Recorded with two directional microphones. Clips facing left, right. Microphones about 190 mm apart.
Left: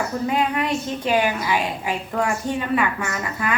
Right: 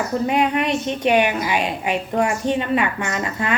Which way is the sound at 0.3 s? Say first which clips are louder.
Right 2 dB; 20° right (ahead or behind).